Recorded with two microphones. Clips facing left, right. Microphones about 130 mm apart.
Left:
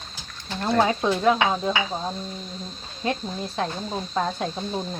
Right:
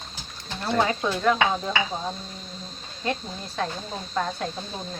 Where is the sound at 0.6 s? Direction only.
15° left (ahead or behind).